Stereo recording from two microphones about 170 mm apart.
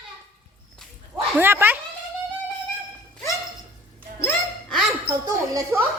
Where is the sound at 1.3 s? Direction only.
15° right (ahead or behind).